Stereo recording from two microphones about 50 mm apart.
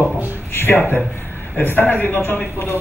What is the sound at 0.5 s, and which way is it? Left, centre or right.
A man's voice, left.